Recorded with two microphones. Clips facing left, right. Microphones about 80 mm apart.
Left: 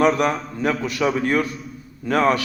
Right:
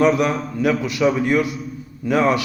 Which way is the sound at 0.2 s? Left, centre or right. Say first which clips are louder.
Right 1 dB; left.